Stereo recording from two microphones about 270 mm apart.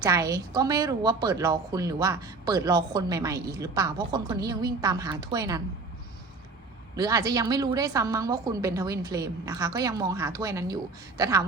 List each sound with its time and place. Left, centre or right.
0.0 s a woman's voice: centre
6.9 s a woman's voice: centre